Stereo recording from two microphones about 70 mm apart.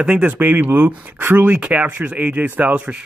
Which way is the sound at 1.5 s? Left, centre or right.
Centre.